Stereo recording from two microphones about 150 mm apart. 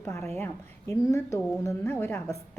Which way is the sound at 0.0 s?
15° left (ahead or behind).